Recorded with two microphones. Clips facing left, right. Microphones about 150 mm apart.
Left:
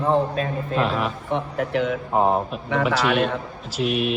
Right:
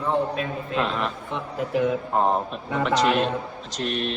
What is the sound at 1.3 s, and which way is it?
Speech, 70° left (ahead or behind).